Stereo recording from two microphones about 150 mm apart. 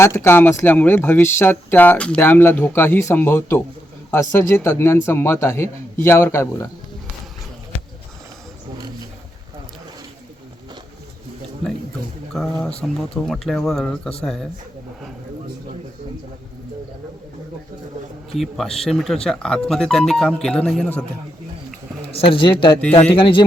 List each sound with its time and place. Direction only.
0.0 s speech: 20° left (ahead or behind)
12.3 s speech: 5° left (ahead or behind)
18.3 s speech: centre (ahead or behind)
22.1 s speech: 35° left (ahead or behind)